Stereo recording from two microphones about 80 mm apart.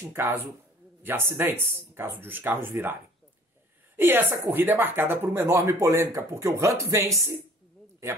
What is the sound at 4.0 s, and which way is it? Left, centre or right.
Speech, right.